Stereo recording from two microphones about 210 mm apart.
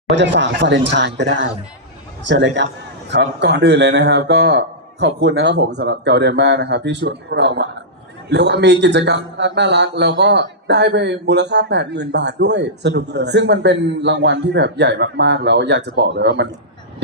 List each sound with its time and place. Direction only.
0.2 s a man's voice: 60° right (ahead or behind)